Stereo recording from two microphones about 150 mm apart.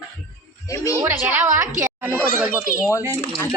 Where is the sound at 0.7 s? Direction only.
20° left (ahead or behind).